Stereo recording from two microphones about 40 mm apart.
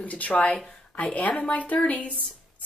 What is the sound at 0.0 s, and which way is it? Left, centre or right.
A woman's voice, left.